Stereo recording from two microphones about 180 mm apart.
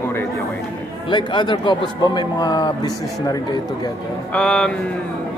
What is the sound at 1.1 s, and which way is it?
A man's voice, 25° left (ahead or behind).